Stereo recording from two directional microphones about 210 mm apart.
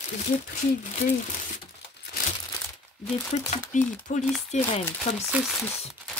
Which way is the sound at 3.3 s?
30° left (ahead or behind).